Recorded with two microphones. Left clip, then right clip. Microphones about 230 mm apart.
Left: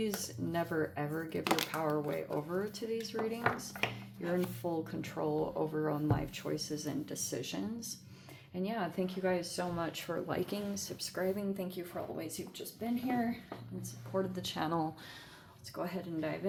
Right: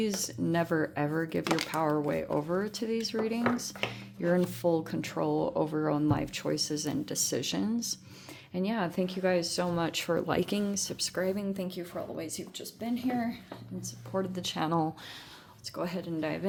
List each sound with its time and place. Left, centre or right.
0.2 s speech: right
1.5 s speech: centre
1.7 s speech: right
15.7 s speech: right